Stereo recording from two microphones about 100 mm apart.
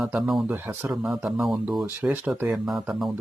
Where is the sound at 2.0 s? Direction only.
15° right (ahead or behind).